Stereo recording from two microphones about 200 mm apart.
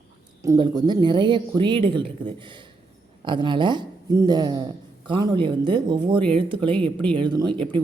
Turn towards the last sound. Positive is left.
turn(degrees=-20)  # may be behind; listen again after turning